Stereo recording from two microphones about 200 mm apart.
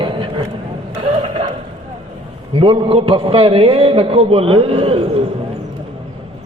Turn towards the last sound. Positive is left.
turn(degrees=-30)  # may be behind; listen again after turning